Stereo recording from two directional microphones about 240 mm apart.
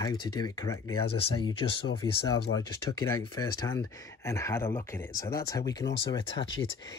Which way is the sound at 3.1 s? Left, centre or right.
Centre.